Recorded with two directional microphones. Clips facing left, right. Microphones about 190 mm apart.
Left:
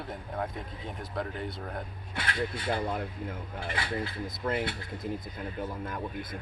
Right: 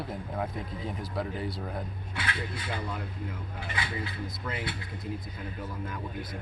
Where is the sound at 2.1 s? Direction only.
40° left (ahead or behind).